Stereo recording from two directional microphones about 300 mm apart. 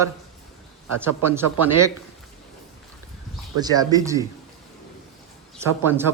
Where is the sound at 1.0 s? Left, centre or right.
Centre.